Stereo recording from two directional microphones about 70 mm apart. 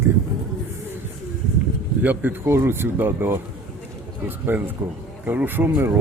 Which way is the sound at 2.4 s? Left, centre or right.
Right.